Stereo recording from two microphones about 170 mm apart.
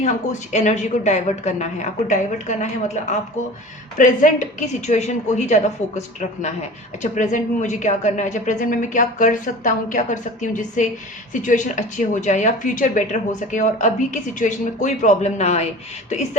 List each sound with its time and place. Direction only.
0.0 s speech: 45° left (ahead or behind)